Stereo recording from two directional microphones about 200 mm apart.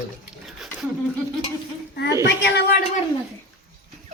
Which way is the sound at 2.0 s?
60° left (ahead or behind).